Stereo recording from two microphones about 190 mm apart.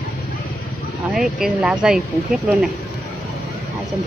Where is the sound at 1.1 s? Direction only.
Centre (ahead or behind).